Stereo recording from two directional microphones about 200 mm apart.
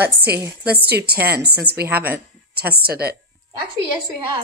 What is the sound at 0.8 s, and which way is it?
Speech, 55° right (ahead or behind).